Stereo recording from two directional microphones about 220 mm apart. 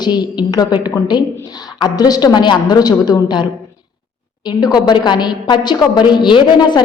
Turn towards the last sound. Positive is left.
turn(degrees=20)  # may be behind; listen again after turning